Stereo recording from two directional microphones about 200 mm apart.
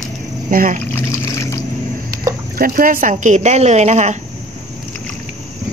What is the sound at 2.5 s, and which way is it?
Speech, 45° right (ahead or behind).